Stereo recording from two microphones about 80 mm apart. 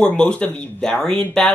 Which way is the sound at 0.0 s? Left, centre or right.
Centre.